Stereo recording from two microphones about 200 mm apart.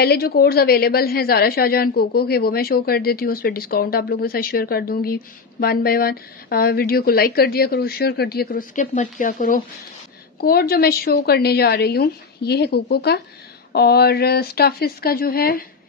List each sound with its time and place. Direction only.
0.0 s a woman's voice: 50° left (ahead or behind)